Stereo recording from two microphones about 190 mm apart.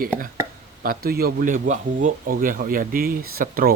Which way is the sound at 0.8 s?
50° right (ahead or behind).